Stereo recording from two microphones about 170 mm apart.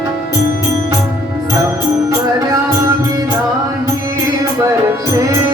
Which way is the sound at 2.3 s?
20° right (ahead or behind).